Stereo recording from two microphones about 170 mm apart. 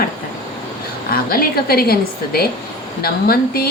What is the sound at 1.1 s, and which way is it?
Speech, 60° left (ahead or behind).